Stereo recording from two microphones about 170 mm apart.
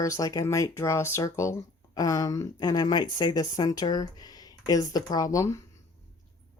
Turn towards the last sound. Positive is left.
turn(degrees=20)  # may be behind; listen again after turning